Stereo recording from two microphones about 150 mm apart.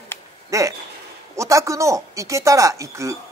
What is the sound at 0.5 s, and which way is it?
Speech, 20° right (ahead or behind).